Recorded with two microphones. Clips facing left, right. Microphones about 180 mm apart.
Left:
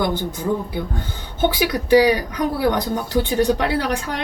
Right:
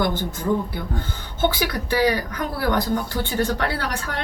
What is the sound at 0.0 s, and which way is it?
Speech, 15° left (ahead or behind).